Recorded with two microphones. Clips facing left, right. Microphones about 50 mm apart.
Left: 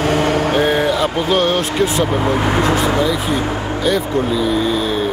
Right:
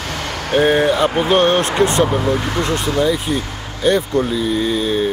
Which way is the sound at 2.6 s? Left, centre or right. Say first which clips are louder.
Left 2 dB; centre.